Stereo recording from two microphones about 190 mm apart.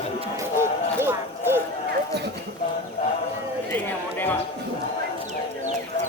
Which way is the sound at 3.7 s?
10° left (ahead or behind).